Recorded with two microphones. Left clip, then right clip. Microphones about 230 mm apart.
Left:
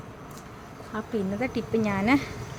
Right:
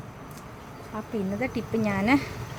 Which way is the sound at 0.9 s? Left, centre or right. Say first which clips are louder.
Left 2 dB; left.